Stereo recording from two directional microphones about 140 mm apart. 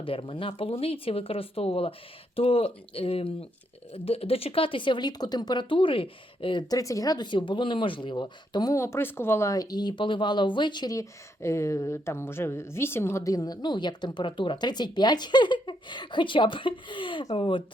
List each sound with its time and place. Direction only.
0.0 s speech: 40° left (ahead or behind)